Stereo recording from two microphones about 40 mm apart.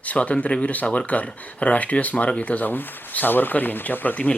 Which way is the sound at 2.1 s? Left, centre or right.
Left.